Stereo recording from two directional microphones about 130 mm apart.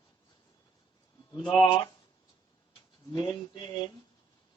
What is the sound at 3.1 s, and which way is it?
Speech, 35° left (ahead or behind).